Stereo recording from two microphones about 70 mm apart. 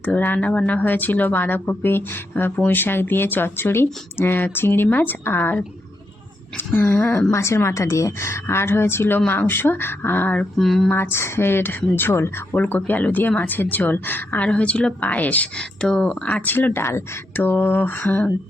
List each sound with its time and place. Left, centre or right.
0.0 s a woman's voice: left
6.7 s a woman's voice: left
7.3 s a woman's voice: left
10.6 s speech: centre
10.9 s a woman's voice: left